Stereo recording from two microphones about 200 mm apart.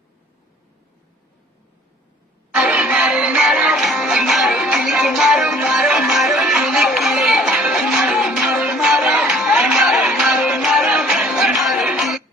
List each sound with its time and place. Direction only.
2.5 s music: 5° right (ahead or behind)